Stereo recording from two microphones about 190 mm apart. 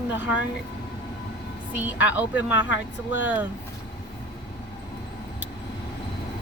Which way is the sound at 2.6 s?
75° left (ahead or behind).